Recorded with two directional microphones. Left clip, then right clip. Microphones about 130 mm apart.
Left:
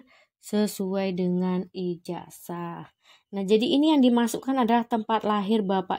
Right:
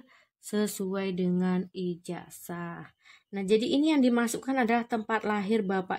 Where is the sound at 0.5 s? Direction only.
25° left (ahead or behind).